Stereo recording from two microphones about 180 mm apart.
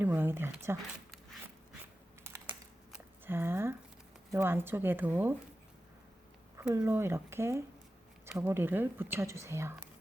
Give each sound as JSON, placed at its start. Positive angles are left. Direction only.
{"t": 0.0, "sound": "speech", "side_deg": -10}
{"t": 2.2, "sound": "typing", "side_deg": -15}
{"t": 2.9, "sound": "a sound", "side_deg": -10}
{"t": 4.3, "sound": "speech", "side_deg": -15}
{"t": 6.6, "sound": "speech", "side_deg": -10}